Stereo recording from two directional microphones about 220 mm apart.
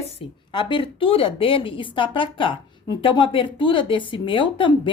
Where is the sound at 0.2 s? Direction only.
20° left (ahead or behind).